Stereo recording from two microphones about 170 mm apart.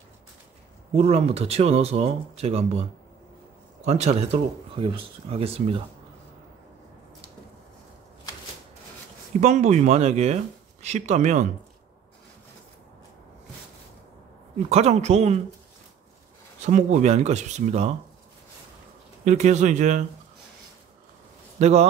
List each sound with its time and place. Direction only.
0.9 s speech: 40° right (ahead or behind)
3.8 s speech: 40° right (ahead or behind)
9.4 s speech: 40° right (ahead or behind)
14.7 s speech: 40° right (ahead or behind)
16.6 s speech: 45° right (ahead or behind)
19.2 s speech: 45° right (ahead or behind)
21.5 s a man's voice: 40° right (ahead or behind)